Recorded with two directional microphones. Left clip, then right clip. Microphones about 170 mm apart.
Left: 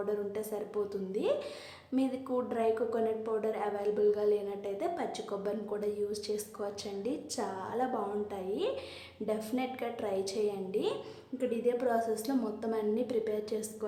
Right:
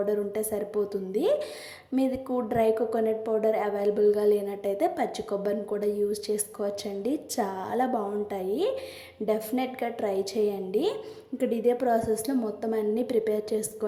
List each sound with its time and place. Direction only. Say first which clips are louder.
0.0 s a woman's voice: right 7 dB; 25° right (ahead or behind)